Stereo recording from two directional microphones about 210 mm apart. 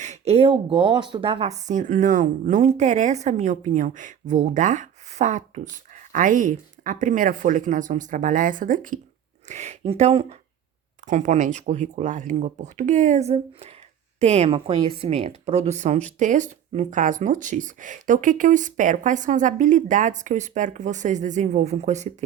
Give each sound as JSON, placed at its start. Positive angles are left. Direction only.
{"t": 0.0, "sound": "speech", "side_deg": -30}